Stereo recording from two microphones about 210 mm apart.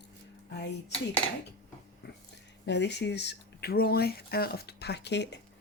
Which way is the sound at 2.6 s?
55° left (ahead or behind).